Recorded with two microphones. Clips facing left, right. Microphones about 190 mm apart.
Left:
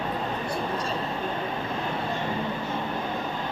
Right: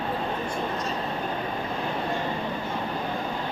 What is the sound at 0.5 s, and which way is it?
Vehicle, 30° left (ahead or behind).